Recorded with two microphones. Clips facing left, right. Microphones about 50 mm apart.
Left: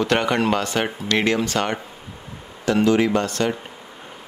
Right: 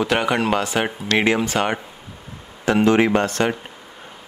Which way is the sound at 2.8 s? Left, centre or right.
Right.